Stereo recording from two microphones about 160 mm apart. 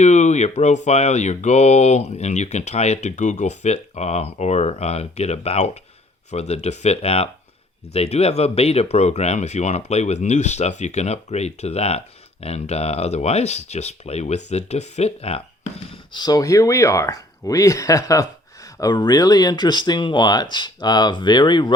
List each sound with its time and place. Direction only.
0.0 s speech: 45° left (ahead or behind)
15.9 s speech: 25° left (ahead or behind)